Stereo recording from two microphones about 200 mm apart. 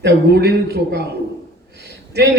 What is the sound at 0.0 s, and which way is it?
A man's voice, 55° right (ahead or behind).